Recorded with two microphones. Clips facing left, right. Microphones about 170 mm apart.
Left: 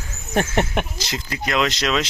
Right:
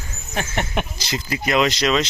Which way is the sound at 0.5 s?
Centre (ahead or behind).